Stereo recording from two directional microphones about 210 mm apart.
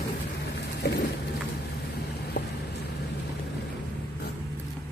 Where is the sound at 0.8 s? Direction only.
55° left (ahead or behind).